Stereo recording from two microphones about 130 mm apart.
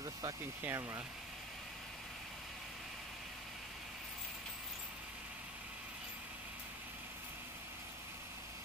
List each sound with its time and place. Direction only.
0.7 s speech: 20° right (ahead or behind)